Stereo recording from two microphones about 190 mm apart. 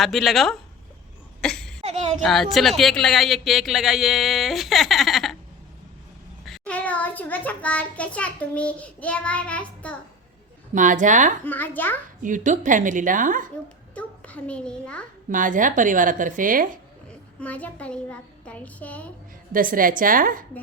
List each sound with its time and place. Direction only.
0.0 s speech: centre (ahead or behind)
1.4 s a sound: 5° left (ahead or behind)
1.8 s a sound: 35° right (ahead or behind)
2.2 s speech: centre (ahead or behind)
6.4 s a child's voice: 5° left (ahead or behind)
10.8 s speech: 40° right (ahead or behind)
11.4 s a child's voice: 10° left (ahead or behind)
12.2 s a woman's voice: 40° right (ahead or behind)
13.9 s a child's voice: 5° left (ahead or behind)
15.3 s a woman's voice: 45° right (ahead or behind)
17.4 s a child's voice: 5° left (ahead or behind)
19.5 s a woman's voice: 45° right (ahead or behind)